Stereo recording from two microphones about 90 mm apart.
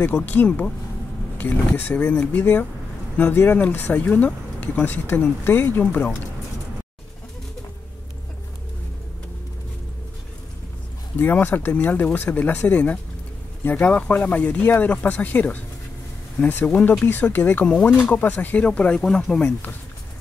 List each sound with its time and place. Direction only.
0.0 s speech: 20° left (ahead or behind)
11.1 s speech: 20° left (ahead or behind)